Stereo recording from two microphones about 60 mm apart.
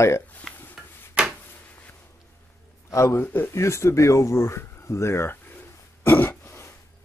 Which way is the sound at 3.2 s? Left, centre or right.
Left.